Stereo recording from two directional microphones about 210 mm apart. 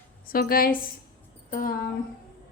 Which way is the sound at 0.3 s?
45° left (ahead or behind).